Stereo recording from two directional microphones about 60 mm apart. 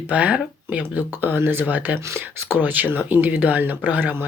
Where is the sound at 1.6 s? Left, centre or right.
Right.